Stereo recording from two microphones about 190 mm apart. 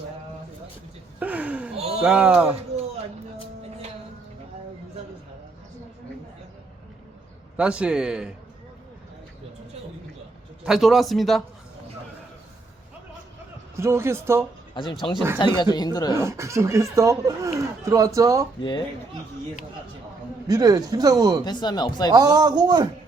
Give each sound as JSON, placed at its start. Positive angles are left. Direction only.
{"t": 1.2, "sound": "a sound", "side_deg": -10}
{"t": 2.0, "sound": "a man's voice", "side_deg": -5}
{"t": 7.5, "sound": "a man's voice", "side_deg": -5}
{"t": 10.7, "sound": "a man's voice", "side_deg": 0}
{"t": 13.7, "sound": "speech", "side_deg": -15}
{"t": 14.8, "sound": "speech", "side_deg": 25}
{"t": 16.1, "sound": "speech", "side_deg": -15}
{"t": 20.5, "sound": "speech", "side_deg": -20}
{"t": 21.4, "sound": "speech", "side_deg": 20}
{"t": 22.1, "sound": "speech", "side_deg": -20}